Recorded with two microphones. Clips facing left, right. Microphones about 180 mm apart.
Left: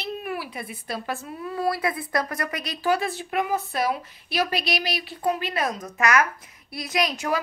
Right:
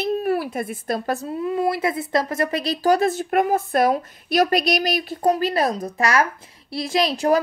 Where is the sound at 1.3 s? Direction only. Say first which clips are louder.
Right 4 dB; 20° right (ahead or behind).